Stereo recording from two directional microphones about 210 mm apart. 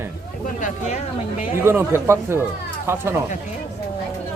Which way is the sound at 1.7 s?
10° right (ahead or behind).